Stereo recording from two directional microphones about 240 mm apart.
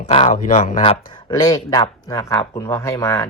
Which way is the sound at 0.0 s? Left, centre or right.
Left.